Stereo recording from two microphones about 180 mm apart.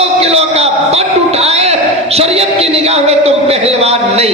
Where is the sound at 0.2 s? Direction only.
35° right (ahead or behind).